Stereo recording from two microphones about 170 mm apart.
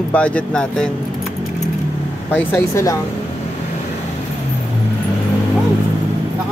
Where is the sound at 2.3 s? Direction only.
15° left (ahead or behind).